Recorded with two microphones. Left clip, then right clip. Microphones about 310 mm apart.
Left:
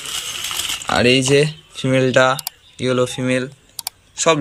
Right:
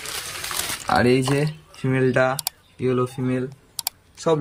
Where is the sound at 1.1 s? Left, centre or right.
Centre.